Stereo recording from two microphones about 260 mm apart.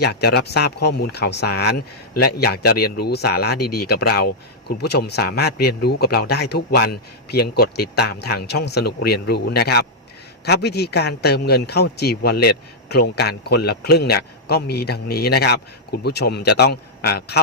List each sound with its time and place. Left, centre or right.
0.0 s speech: left